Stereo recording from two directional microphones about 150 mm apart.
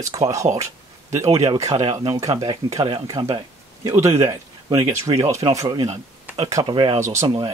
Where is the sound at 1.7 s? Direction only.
40° right (ahead or behind).